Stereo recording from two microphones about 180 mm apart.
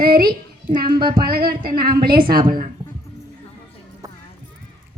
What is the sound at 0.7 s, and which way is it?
Music, 25° right (ahead or behind).